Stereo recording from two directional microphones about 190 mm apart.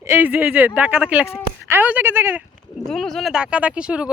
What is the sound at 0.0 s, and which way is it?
Speech, 10° right (ahead or behind).